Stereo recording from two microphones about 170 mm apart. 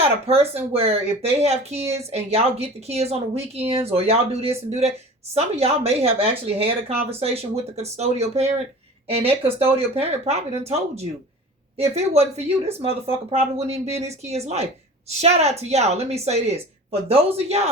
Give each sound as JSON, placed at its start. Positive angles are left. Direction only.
{"t": 0.0, "sound": "speech", "side_deg": -35}